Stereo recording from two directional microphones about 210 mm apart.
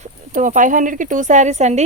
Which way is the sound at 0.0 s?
40° right (ahead or behind).